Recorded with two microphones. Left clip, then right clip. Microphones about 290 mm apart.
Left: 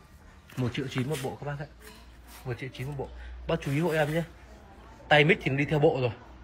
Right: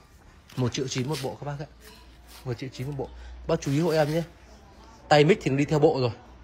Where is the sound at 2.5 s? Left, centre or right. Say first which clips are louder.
Right 2 dB; right.